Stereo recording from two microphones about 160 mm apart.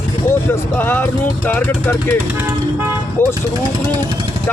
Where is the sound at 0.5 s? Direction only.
15° left (ahead or behind).